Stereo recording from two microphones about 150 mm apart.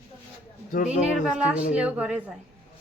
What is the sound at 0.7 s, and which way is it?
Speech, 55° left (ahead or behind).